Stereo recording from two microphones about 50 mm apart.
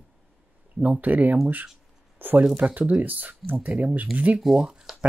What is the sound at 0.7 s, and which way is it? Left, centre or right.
Speech, right.